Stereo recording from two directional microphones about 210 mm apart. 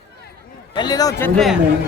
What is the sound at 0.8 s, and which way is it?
Speech, 20° left (ahead or behind).